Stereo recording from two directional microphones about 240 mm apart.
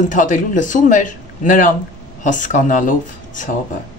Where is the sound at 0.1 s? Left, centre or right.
Left.